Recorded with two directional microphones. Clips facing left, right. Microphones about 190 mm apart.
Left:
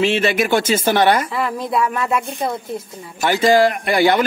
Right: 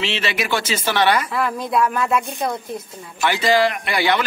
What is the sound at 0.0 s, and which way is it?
Speech, 50° left (ahead or behind).